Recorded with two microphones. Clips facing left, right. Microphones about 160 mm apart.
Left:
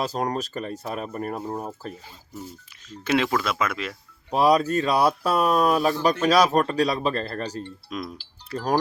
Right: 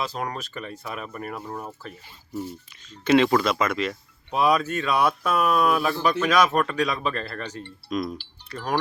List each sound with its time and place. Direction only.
0.0 s speech: 40° left (ahead or behind)
3.0 s speech: centre (ahead or behind)
4.3 s speech: 35° left (ahead or behind)
7.9 s speech: 5° left (ahead or behind)
8.5 s speech: 40° left (ahead or behind)